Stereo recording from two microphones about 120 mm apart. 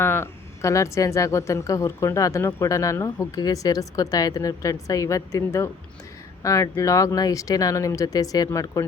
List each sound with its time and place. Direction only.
0.0 s speech: 20° left (ahead or behind)